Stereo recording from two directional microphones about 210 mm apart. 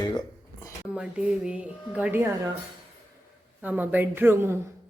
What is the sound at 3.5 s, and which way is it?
Speech, 10° right (ahead or behind).